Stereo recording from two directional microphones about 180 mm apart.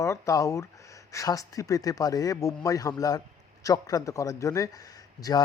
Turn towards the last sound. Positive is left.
turn(degrees=20)  # may be behind; listen again after turning